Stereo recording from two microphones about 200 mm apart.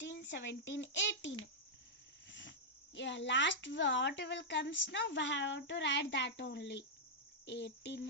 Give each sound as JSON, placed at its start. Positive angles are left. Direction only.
{"t": 0.0, "sound": "speech", "side_deg": 65}